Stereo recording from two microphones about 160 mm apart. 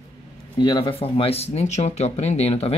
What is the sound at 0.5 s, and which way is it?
Speech, 30° left (ahead or behind).